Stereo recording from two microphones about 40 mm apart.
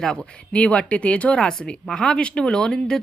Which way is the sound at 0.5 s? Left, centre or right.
Left.